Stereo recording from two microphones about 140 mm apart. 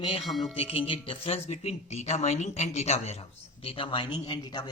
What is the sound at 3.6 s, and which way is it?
A man's voice, 40° left (ahead or behind).